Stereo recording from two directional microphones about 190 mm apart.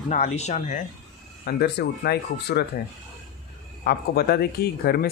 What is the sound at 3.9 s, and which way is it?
Speech, 55° left (ahead or behind).